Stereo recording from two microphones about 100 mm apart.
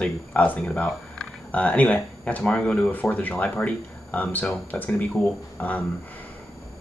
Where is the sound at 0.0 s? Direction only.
15° left (ahead or behind).